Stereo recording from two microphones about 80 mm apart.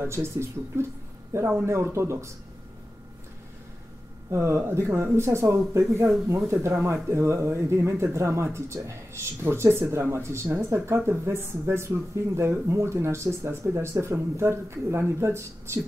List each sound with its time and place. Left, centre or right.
0.0 s speech: right
4.3 s speech: right